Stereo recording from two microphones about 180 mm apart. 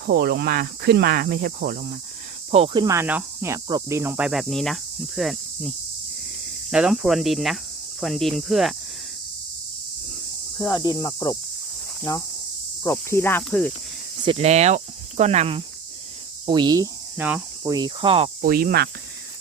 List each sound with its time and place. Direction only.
0.0 s speech: 60° right (ahead or behind)
2.5 s speech: 35° right (ahead or behind)
2.8 s speech: 15° right (ahead or behind)
10.7 s speech: 20° left (ahead or behind)
14.3 s speech: 35° right (ahead or behind)
16.5 s cricket: 25° right (ahead or behind)
17.2 s speech: 10° right (ahead or behind)
17.6 s cricket: 20° right (ahead or behind)
18.4 s speech: 55° right (ahead or behind)